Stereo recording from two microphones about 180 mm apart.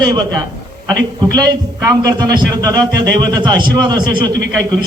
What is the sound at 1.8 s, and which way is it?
A man's voice, 20° right (ahead or behind).